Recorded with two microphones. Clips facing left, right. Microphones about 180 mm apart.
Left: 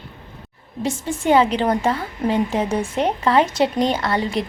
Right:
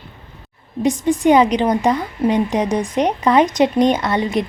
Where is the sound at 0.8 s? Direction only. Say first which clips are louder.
Right 7 dB; 15° right (ahead or behind).